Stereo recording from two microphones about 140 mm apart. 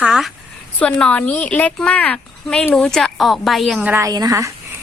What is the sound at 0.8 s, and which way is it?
Speech, 5° left (ahead or behind).